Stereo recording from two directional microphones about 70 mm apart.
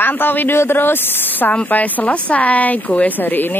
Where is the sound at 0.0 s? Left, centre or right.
Left.